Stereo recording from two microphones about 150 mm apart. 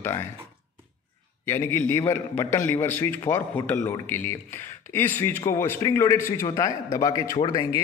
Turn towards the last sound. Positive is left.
turn(degrees=30)  # may be behind; listen again after turning